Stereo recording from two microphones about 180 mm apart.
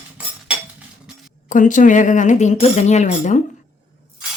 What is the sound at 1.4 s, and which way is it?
Speech, 45° left (ahead or behind).